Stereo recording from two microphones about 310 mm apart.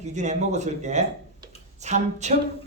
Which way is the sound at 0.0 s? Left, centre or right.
Right.